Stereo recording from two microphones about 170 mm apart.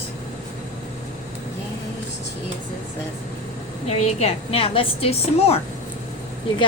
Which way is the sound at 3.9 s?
40° left (ahead or behind).